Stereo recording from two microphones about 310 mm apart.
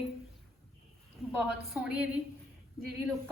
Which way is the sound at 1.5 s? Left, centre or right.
Centre.